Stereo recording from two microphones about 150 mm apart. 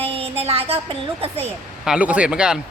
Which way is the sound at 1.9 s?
10° right (ahead or behind).